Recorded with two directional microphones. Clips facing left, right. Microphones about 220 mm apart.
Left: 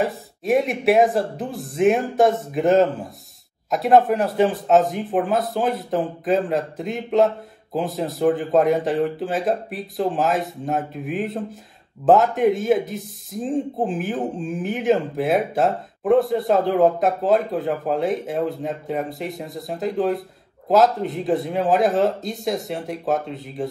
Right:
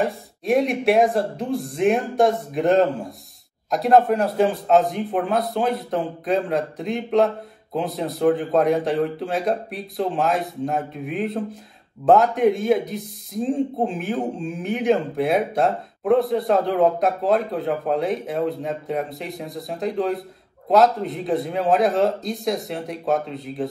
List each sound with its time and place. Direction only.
0.0 s speech: centre (ahead or behind)